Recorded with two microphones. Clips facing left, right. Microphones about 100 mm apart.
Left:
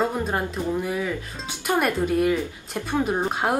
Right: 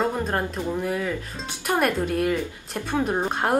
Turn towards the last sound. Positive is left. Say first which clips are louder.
# even
turn(degrees=0)  # may be behind; listen again after turning